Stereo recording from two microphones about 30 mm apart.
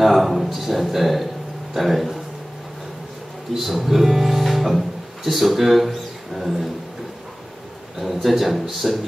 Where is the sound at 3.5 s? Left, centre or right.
Centre.